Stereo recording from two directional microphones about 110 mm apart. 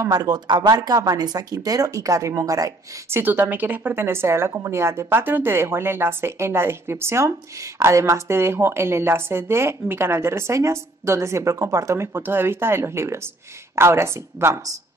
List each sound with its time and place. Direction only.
0.0 s speech: 35° right (ahead or behind)